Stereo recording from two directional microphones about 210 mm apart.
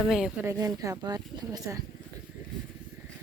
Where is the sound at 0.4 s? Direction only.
15° right (ahead or behind).